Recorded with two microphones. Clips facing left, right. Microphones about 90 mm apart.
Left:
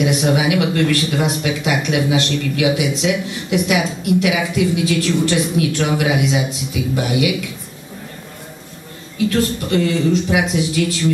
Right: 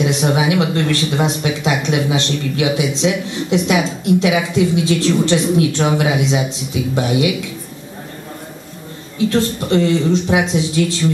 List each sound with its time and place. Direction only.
0.0 s speech: 25° right (ahead or behind)
9.3 s speech: 25° right (ahead or behind)